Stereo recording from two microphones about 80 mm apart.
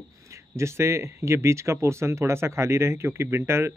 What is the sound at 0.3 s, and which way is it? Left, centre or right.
Speech, right.